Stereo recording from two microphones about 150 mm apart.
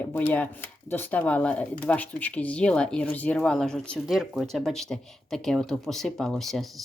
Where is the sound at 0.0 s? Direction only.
15° left (ahead or behind).